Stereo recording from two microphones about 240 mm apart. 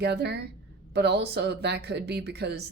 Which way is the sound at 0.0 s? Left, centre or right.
Right.